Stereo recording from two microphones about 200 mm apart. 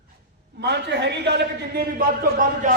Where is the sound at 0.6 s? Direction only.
60° right (ahead or behind).